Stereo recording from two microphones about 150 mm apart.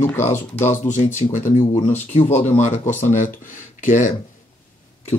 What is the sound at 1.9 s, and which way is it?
Speech, 50° left (ahead or behind).